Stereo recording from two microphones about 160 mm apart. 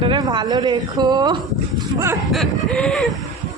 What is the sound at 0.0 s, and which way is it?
A woman's voice, 30° right (ahead or behind).